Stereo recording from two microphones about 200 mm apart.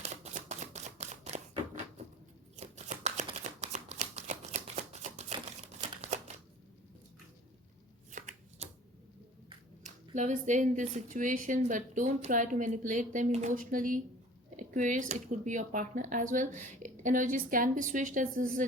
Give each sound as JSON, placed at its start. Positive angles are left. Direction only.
{"t": 0.0, "sound": "a sound", "side_deg": -35}
{"t": 3.3, "sound": "shuffling cards", "side_deg": -35}
{"t": 8.1, "sound": "shuffling cards", "side_deg": -35}
{"t": 9.8, "sound": "speech", "side_deg": -35}